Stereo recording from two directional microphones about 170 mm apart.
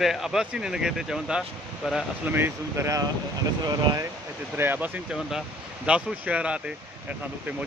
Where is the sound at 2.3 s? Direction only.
15° right (ahead or behind).